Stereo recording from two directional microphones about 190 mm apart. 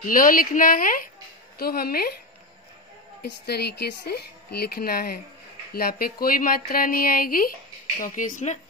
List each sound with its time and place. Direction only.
0.0 s speech: 45° left (ahead or behind)
3.2 s speech: 60° left (ahead or behind); by 8.5 s 40° left (ahead or behind)